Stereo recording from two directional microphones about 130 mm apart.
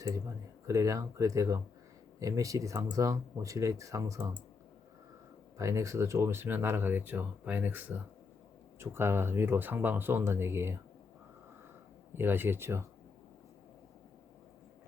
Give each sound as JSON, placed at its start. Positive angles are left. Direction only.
{"t": 0.7, "sound": "speech", "side_deg": -25}
{"t": 5.5, "sound": "speech", "side_deg": -25}
{"t": 12.1, "sound": "speech", "side_deg": -15}